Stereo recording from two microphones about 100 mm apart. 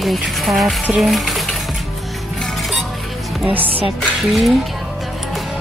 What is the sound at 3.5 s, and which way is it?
Music, 65° right (ahead or behind).